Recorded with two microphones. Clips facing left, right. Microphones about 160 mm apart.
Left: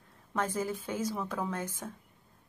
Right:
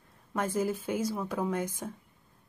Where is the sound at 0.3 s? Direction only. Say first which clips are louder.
Right 3 dB; 10° right (ahead or behind).